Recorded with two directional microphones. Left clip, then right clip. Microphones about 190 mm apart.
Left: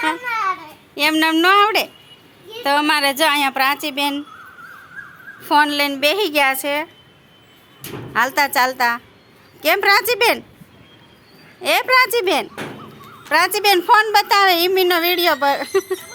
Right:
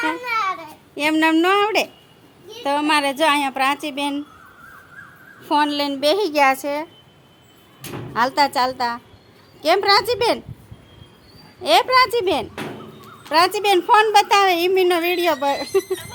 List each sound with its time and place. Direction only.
0.2 s a sound: 40° right (ahead or behind)
0.9 s a woman's voice: 10° right (ahead or behind)
5.4 s a woman's voice: 5° right (ahead or behind)
8.1 s a woman's voice: centre (ahead or behind)
11.6 s a woman's voice: centre (ahead or behind)